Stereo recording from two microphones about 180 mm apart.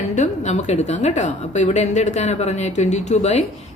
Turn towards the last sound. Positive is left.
turn(degrees=40)  # may be behind; listen again after turning